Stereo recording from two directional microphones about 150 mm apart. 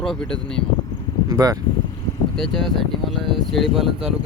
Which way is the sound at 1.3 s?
25° right (ahead or behind).